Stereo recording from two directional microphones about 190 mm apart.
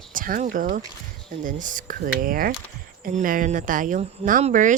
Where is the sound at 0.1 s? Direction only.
45° right (ahead or behind).